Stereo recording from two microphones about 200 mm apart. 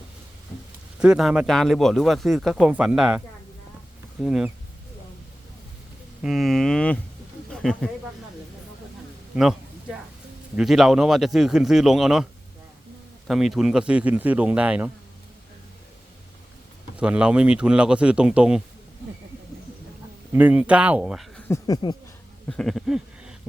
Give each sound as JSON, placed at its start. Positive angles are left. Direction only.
{"t": 0.9, "sound": "speech", "side_deg": -5}
{"t": 6.2, "sound": "speech", "side_deg": 0}
{"t": 9.3, "sound": "a sound", "side_deg": -5}
{"t": 10.5, "sound": "speech", "side_deg": 0}
{"t": 17.0, "sound": "speech", "side_deg": -5}
{"t": 20.3, "sound": "speech", "side_deg": -10}
{"t": 21.4, "sound": "speech", "side_deg": 15}
{"t": 22.4, "sound": "a sound", "side_deg": 0}